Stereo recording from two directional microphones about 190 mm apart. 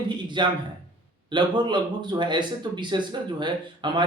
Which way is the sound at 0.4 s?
25° right (ahead or behind).